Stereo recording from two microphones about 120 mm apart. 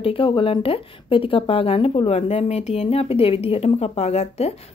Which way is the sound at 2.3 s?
65° left (ahead or behind).